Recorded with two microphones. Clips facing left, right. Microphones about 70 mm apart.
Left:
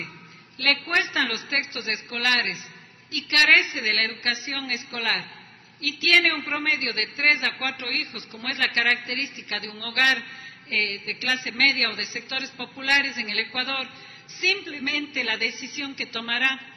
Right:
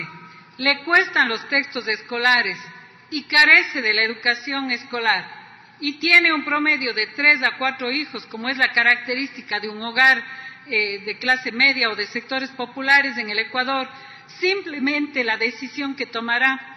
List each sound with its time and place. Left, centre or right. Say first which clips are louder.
0.6 s a man's voice: right 6 dB; right